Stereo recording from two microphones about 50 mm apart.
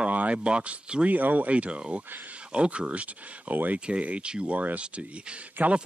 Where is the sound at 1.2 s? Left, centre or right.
Right.